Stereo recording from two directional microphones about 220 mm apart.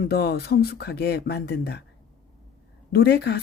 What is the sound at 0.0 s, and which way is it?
Speech, 45° left (ahead or behind).